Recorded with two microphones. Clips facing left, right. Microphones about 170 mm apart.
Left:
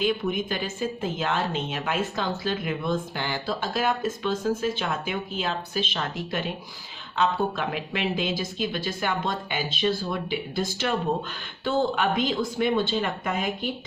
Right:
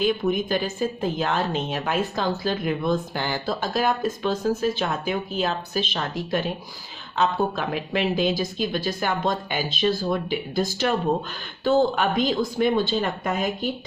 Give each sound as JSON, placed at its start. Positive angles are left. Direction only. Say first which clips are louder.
{"t": 0.0, "sound": "speech", "louder": "right 3 dB", "side_deg": -40}